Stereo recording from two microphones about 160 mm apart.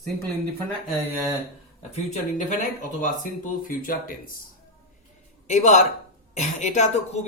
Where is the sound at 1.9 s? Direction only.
50° left (ahead or behind).